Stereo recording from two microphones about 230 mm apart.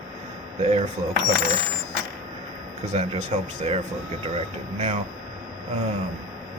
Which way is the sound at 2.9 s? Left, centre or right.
Right.